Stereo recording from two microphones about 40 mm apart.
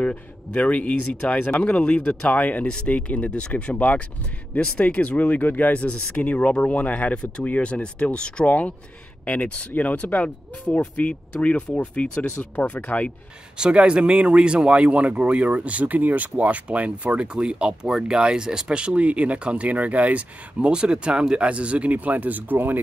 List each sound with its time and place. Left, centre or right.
0.0 s speech: left
3.7 s speech: left
8.5 s speech: left
13.6 s speech: right
20.6 s speech: right